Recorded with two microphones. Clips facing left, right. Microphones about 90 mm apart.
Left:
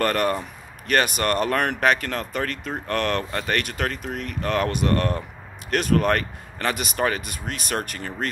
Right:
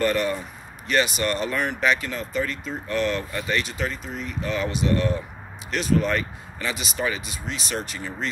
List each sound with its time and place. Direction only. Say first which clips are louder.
0.0 s speech: left 1 dB; 55° left (ahead or behind)